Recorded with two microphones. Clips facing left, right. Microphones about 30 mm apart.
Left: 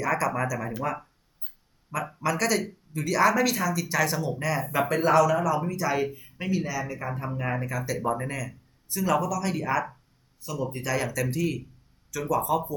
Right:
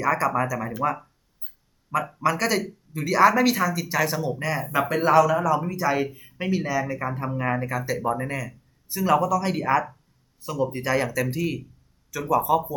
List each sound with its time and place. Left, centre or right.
0.0 s speech: centre
6.5 s speech: right